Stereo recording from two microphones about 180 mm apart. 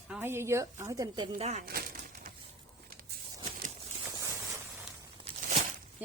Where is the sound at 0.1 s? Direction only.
10° right (ahead or behind).